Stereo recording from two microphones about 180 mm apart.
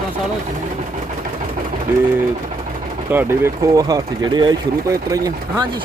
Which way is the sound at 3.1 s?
15° right (ahead or behind).